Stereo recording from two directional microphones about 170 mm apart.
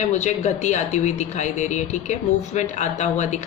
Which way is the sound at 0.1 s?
45° left (ahead or behind).